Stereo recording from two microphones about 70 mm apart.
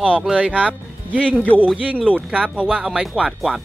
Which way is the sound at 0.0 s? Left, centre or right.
Centre.